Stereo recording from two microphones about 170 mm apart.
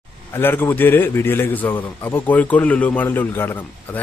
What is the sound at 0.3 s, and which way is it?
A man's voice, 15° left (ahead or behind).